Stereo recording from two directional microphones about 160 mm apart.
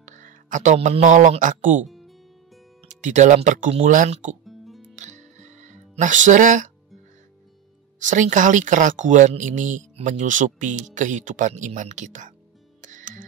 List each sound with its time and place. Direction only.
0.0 s speech: 50° right (ahead or behind)
1.9 s music: centre (ahead or behind)
2.9 s speech: 50° right (ahead or behind)
4.5 s music: centre (ahead or behind)
4.9 s music: 50° right (ahead or behind)
8.0 s speech: 50° right (ahead or behind)
12.8 s music: 50° right (ahead or behind)